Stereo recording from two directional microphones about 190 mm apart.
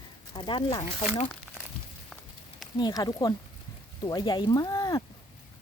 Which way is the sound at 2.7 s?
20° left (ahead or behind).